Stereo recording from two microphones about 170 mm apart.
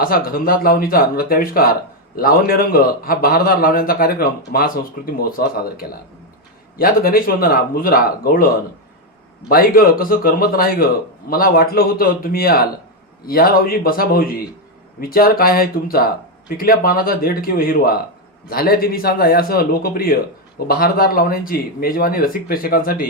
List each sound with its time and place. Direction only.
0.0 s a man's voice: 60° left (ahead or behind)
9.5 s a man's voice: 60° left (ahead or behind)